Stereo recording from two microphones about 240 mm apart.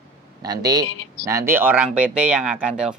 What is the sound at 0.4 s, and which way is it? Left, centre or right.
Speech, centre.